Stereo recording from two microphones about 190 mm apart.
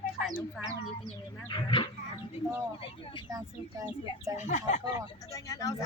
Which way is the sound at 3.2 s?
15° right (ahead or behind).